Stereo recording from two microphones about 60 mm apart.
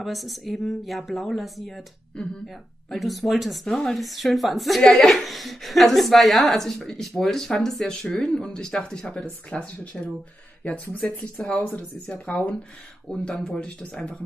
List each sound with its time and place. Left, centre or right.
0.0 s speech: centre; by 11.1 s left
11.1 s speech: centre